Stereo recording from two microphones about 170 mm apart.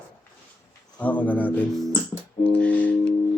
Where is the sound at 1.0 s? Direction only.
10° left (ahead or behind).